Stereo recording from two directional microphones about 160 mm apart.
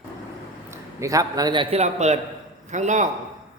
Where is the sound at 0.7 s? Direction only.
20° right (ahead or behind).